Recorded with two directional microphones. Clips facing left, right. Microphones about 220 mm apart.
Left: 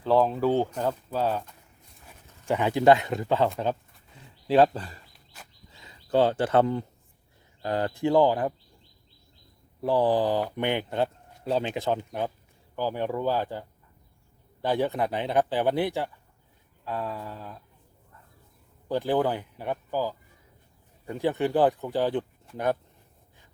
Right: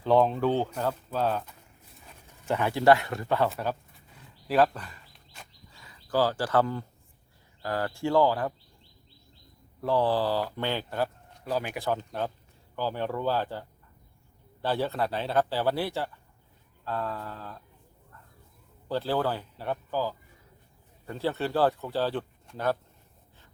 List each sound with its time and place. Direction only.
0.0 s speech: centre (ahead or behind)
2.5 s speech: 15° left (ahead or behind)
9.8 s speech: 15° left (ahead or behind)
18.9 s speech: 15° left (ahead or behind)